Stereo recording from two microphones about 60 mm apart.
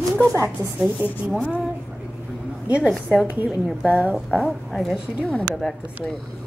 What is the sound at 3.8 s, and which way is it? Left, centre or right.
Speech, centre.